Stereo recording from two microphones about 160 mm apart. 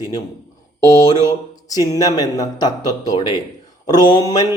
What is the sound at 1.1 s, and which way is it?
Speech, 25° left (ahead or behind).